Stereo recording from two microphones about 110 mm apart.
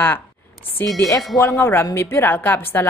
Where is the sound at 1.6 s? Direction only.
20° left (ahead or behind).